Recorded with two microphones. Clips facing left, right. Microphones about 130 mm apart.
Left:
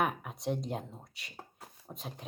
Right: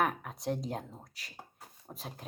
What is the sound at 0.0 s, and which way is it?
Speech, 5° left (ahead or behind).